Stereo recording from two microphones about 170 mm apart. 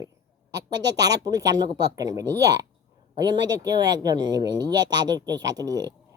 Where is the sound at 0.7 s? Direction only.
90° right.